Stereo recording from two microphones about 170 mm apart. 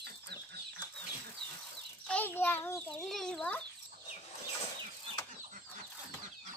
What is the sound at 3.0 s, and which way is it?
Speech, centre (ahead or behind).